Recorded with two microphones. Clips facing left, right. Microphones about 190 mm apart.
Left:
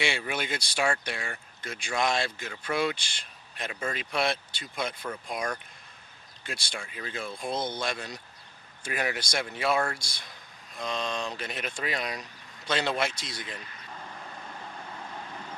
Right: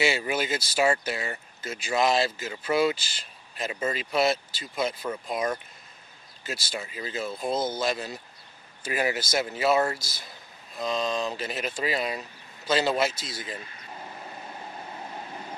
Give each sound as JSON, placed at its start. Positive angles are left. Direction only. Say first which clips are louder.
{"t": 0.0, "sound": "speech", "louder": "right 5 dB", "side_deg": -5}
{"t": 14.1, "sound": "vehicle", "louder": "right 2 dB", "side_deg": -20}